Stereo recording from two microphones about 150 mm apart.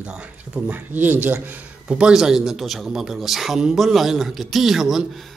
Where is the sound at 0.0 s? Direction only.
10° right (ahead or behind).